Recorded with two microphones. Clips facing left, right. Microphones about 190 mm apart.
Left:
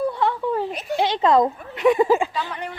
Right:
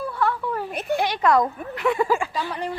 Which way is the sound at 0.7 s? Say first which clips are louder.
Right 2 dB; 55° right (ahead or behind).